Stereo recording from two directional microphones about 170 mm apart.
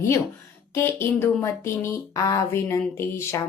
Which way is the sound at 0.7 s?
15° left (ahead or behind).